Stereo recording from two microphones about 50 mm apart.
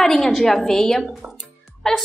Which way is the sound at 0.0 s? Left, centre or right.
Centre.